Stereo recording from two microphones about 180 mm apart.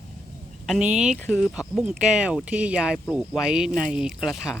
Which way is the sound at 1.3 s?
5° right (ahead or behind).